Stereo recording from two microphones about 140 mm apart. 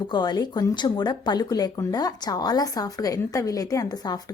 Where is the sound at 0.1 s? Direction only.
30° left (ahead or behind).